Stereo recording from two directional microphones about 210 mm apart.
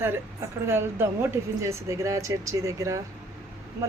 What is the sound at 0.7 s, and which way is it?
Speech, 10° right (ahead or behind).